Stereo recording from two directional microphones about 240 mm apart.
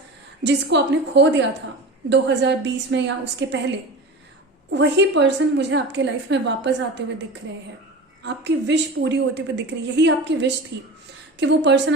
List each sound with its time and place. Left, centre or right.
0.4 s a woman's voice: right
4.7 s a woman's voice: right